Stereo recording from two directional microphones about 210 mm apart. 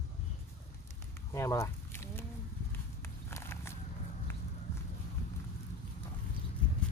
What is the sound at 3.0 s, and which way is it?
Walk, 10° left (ahead or behind).